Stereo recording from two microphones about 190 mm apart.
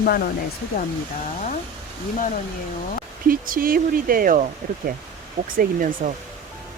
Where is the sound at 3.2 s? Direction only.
50° right (ahead or behind).